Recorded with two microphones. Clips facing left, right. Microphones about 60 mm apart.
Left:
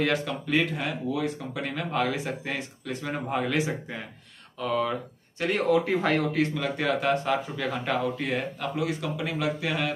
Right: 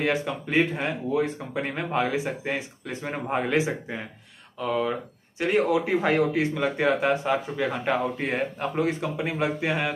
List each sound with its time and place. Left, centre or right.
0.0 s speech: right
4.6 s speech: centre